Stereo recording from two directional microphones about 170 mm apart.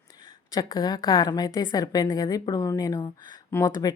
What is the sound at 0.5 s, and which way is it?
A woman's voice, 20° left (ahead or behind).